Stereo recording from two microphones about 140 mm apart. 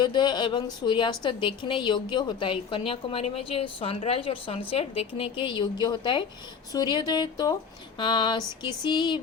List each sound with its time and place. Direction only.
0.0 s a woman's voice: 30° left (ahead or behind)